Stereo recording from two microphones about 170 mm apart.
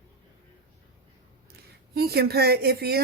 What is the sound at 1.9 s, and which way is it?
A woman's voice, 70° right (ahead or behind).